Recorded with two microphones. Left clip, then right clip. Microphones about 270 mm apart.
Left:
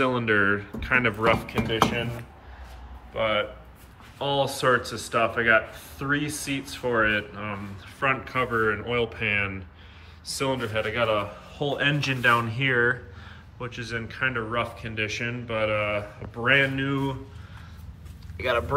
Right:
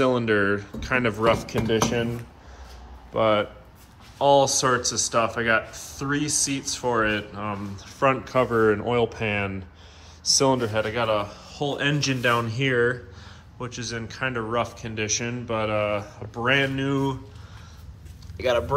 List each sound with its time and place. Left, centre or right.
0.0 s speech: centre
3.1 s speech: right
18.4 s speech: centre